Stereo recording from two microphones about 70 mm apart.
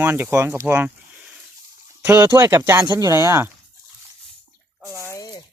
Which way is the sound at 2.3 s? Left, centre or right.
Right.